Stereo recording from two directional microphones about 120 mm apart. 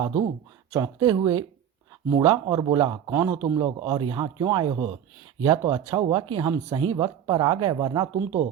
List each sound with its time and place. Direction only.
0.7 s a man's voice: 30° right (ahead or behind)
3.1 s a man's voice: 25° right (ahead or behind)